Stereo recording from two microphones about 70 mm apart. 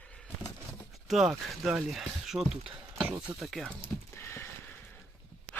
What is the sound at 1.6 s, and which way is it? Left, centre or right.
Speech, centre.